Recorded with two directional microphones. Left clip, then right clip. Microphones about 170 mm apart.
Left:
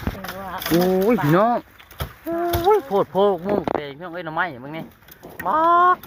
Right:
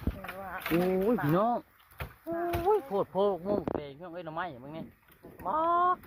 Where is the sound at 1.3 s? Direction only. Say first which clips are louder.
Left 10 dB; 25° left (ahead or behind).